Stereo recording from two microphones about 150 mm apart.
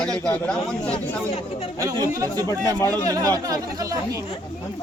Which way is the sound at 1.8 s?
25° right (ahead or behind).